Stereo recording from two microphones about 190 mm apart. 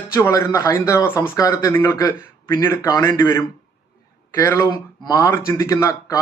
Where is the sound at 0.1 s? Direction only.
15° left (ahead or behind).